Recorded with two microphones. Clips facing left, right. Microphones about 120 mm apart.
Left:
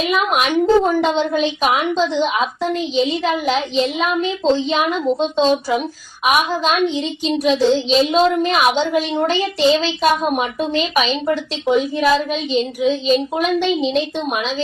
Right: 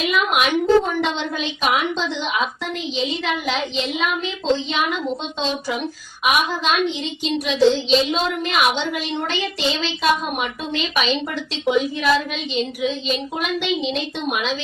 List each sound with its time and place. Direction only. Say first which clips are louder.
0.1 s a woman's voice: left 1 dB; 40° left (ahead or behind)